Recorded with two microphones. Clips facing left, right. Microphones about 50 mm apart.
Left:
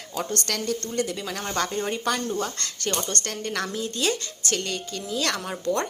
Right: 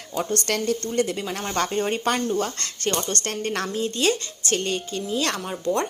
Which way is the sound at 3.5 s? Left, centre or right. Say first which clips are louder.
Right 2 dB; right.